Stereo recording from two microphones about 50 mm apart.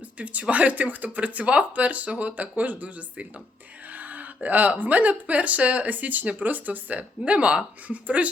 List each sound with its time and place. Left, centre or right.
0.2 s speech: right
3.9 s a sound: right
4.4 s speech: right